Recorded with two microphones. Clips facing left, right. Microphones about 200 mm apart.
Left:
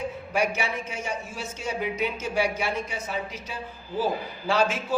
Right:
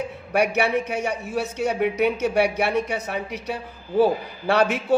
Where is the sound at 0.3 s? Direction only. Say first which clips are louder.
Right 7 dB; 65° right (ahead or behind).